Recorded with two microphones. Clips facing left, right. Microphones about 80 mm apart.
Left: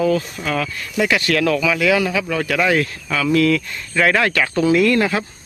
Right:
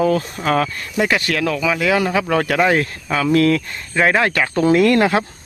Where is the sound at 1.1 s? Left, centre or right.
Right.